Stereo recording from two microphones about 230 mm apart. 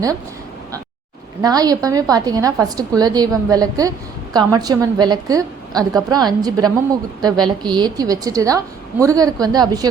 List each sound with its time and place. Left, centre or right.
1.4 s a woman's voice: centre